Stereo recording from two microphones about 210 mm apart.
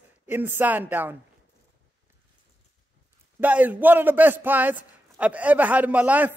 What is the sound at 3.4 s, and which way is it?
A man's voice, 5° right (ahead or behind).